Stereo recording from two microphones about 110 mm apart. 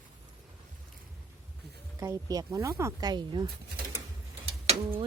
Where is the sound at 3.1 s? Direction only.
40° right (ahead or behind).